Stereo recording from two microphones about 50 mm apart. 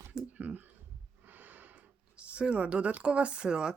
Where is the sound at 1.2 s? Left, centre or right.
Right.